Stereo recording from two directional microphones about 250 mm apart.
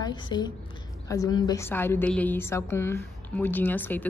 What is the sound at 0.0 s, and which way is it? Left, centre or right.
A woman's voice, centre.